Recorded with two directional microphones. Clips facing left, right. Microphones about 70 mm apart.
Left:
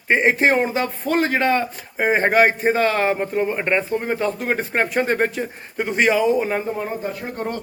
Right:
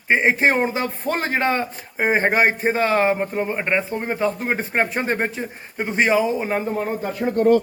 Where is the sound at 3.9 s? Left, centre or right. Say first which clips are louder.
Left 1 dB; right.